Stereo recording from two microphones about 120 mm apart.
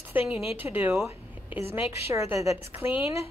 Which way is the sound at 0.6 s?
15° right (ahead or behind).